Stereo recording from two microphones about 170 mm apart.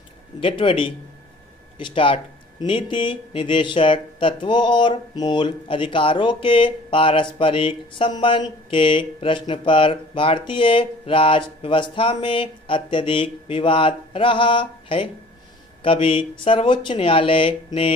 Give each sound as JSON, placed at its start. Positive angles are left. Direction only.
{"t": 0.3, "sound": "speech", "side_deg": 30}